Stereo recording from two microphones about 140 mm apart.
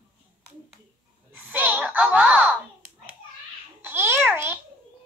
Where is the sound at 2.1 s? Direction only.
10° right (ahead or behind).